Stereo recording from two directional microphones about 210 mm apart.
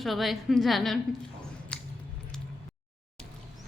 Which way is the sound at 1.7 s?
5° left (ahead or behind).